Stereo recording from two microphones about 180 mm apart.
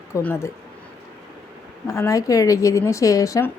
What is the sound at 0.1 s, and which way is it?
Speech, 10° left (ahead or behind).